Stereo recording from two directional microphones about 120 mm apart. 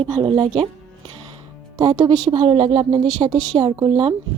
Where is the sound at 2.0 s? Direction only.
55° right (ahead or behind).